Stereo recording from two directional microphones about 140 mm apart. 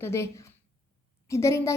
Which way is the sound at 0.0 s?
20° left (ahead or behind).